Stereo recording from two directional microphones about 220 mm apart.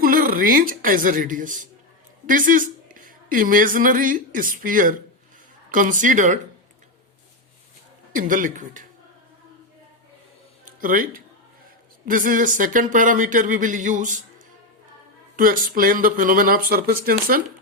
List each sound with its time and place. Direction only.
0.0 s a woman's voice: 40° right (ahead or behind)
8.1 s speech: 35° right (ahead or behind)
10.7 s speech: 40° right (ahead or behind)
15.4 s speech: 40° right (ahead or behind)